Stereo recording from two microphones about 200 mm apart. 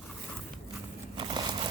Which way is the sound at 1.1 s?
25° right (ahead or behind).